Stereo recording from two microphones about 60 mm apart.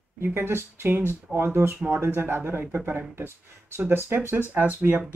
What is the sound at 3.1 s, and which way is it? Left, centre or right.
Speech, right.